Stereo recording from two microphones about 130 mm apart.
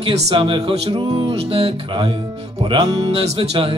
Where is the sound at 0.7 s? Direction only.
50° right (ahead or behind).